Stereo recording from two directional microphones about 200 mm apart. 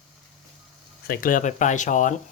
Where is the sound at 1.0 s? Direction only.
45° left (ahead or behind).